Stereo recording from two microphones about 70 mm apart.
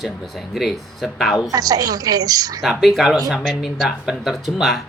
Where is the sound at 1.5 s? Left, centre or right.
Right.